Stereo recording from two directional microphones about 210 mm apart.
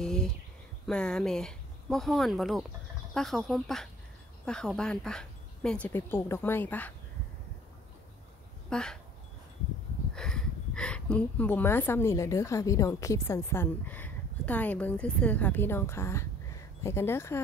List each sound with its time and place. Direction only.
0.0 s a sound: 5° left (ahead or behind)
0.8 s speech: 5° left (ahead or behind)
8.6 s speech: 5° left (ahead or behind)
10.1 s speech: 5° left (ahead or behind)